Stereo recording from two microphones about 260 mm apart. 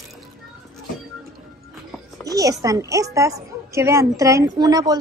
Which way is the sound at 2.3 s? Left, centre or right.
Centre.